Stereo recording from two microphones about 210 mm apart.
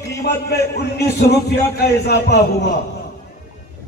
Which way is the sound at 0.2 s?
50° left (ahead or behind).